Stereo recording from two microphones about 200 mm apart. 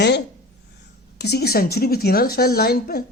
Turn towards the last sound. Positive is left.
turn(degrees=50)  # may be behind; listen again after turning